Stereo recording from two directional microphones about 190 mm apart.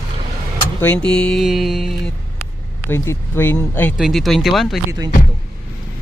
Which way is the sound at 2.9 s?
15° left (ahead or behind).